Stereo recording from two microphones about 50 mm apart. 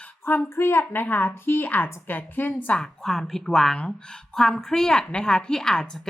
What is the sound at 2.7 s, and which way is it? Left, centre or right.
A woman's voice, centre.